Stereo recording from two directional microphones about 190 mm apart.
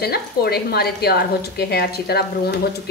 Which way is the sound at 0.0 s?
55° left (ahead or behind).